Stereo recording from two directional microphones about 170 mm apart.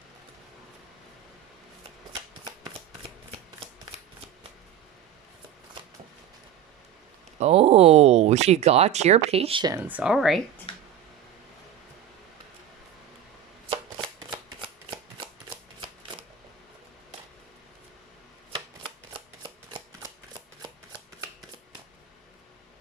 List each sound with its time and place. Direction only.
7.3 s speech: 35° right (ahead or behind)
9.7 s speech: 10° right (ahead or behind)
10.7 s a sound: 35° left (ahead or behind)
14.3 s shuffling cards: 25° right (ahead or behind)
19.1 s shuffling cards: 30° right (ahead or behind)